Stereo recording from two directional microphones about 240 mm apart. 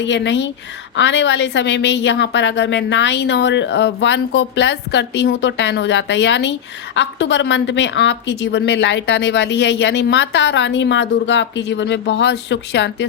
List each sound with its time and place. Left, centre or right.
0.0 s speech: left